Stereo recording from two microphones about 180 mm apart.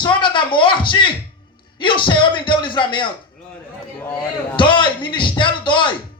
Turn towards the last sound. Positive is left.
turn(degrees=25)  # may be behind; listen again after turning